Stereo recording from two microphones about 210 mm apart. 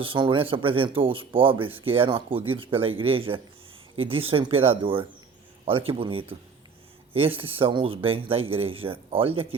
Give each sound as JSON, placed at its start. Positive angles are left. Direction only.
{"t": 0.0, "sound": "speech", "side_deg": -25}